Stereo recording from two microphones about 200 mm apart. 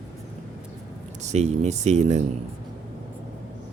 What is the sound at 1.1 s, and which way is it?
Speech, 35° right (ahead or behind).